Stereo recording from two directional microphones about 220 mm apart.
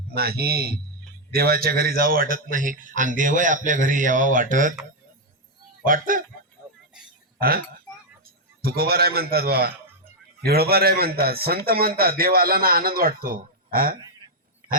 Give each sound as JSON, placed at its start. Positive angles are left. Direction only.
{"t": 0.1, "sound": "a man's voice", "side_deg": -45}
{"t": 5.8, "sound": "a man's voice", "side_deg": -40}
{"t": 7.3, "sound": "a man's voice", "side_deg": -40}